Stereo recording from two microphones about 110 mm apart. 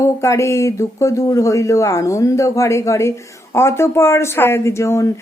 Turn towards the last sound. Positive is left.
turn(degrees=25)  # may be behind; listen again after turning